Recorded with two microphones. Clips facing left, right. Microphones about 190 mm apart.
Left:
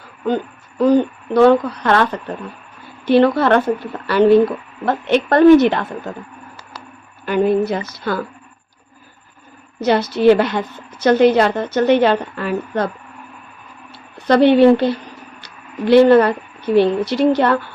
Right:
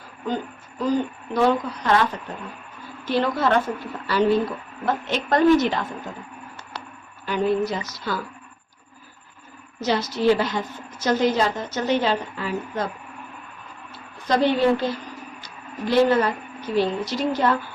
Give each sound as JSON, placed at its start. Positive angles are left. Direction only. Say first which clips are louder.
{"t": 0.8, "sound": "a woman's voice", "louder": "left 9 dB", "side_deg": 65}
{"t": 3.1, "sound": "a woman's voice", "louder": "left 9 dB", "side_deg": 65}
{"t": 7.3, "sound": "a woman's voice", "louder": "left 6 dB", "side_deg": 55}
{"t": 9.8, "sound": "a woman's voice", "louder": "left 7 dB", "side_deg": 60}
{"t": 14.3, "sound": "a woman's voice", "louder": "left 9 dB", "side_deg": 65}